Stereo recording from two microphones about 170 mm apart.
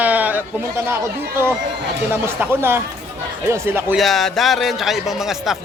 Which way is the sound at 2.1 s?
10° right (ahead or behind).